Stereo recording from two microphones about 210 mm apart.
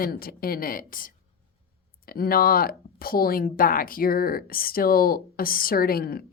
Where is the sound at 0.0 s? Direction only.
45° left (ahead or behind).